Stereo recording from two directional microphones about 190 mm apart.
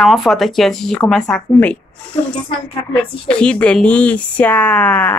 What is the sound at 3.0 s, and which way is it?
Speech, 5° left (ahead or behind).